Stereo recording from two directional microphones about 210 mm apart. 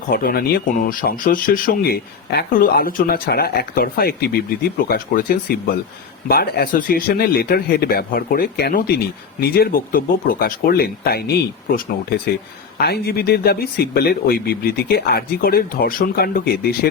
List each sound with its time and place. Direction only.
0.1 s speech: 45° left (ahead or behind)